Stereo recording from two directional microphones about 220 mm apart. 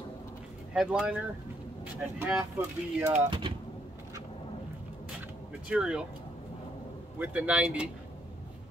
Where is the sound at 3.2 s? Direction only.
25° right (ahead or behind).